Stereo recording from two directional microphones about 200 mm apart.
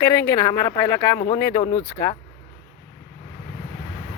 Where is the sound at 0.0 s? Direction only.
15° left (ahead or behind).